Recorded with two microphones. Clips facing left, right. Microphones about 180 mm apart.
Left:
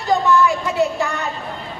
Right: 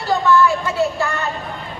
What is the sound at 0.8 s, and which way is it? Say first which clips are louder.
Speech: left 1 dB; 15° left (ahead or behind).